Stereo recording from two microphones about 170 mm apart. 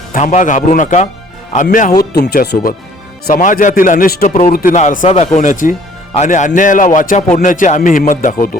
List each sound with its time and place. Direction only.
0.1 s speech: 50° left (ahead or behind)
2.1 s speech: 70° left (ahead or behind)
3.3 s speech: 50° left (ahead or behind)